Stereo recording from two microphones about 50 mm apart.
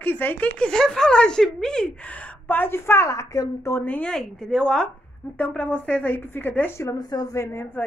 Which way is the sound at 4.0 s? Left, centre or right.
Centre.